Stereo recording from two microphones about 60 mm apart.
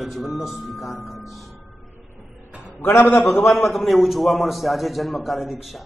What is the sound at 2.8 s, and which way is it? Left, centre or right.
Speech, left.